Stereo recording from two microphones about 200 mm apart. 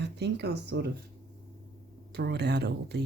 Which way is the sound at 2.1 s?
55° right (ahead or behind).